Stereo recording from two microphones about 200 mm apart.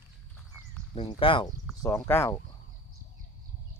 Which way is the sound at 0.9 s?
25° left (ahead or behind).